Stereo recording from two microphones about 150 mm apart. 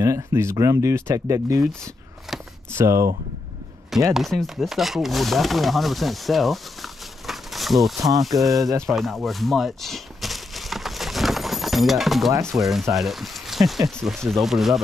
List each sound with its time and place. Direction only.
0.0 s speech: 20° right (ahead or behind)
2.7 s speech: 20° right (ahead or behind)
4.1 s speech: centre (ahead or behind)
8.8 s a sound: centre (ahead or behind)
12.4 s speech: centre (ahead or behind)